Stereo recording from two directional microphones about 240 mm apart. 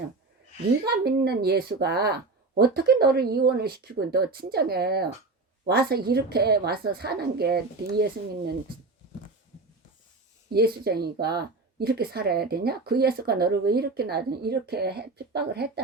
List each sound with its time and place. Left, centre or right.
0.9 s a woman's voice: right
10.5 s a woman's voice: right